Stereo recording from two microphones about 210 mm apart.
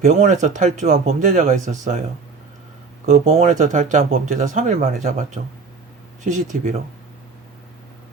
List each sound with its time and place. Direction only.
0.0 s speech: 35° right (ahead or behind)
3.1 s speech: 30° right (ahead or behind)